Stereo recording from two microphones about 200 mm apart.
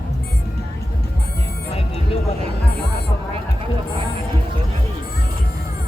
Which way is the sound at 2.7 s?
55° left (ahead or behind).